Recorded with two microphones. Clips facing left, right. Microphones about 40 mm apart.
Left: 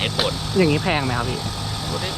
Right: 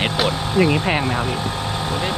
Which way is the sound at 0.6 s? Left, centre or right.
Right.